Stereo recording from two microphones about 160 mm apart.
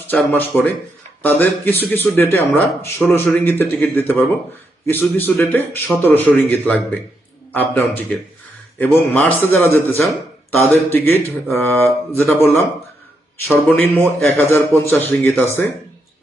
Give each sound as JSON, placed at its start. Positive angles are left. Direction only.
{"t": 0.1, "sound": "speech", "side_deg": 10}
{"t": 13.7, "sound": "speech", "side_deg": 10}